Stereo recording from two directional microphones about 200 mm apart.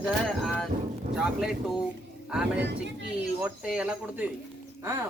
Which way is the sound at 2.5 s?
60° right (ahead or behind).